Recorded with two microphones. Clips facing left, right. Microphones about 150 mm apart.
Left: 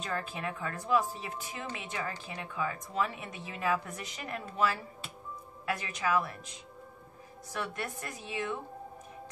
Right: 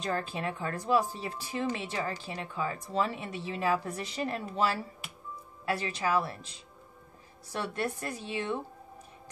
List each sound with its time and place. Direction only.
0.0 s speech: 30° right (ahead or behind)
5.7 s speech: 30° right (ahead or behind)